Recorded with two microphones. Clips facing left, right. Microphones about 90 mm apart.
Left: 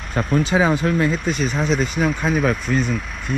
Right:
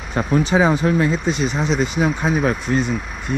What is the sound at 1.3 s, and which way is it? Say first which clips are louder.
Speech: even; 45° left (ahead or behind).